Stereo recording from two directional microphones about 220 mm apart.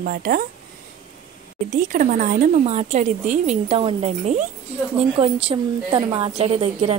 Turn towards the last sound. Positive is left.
turn(degrees=-25)  # may be behind; listen again after turning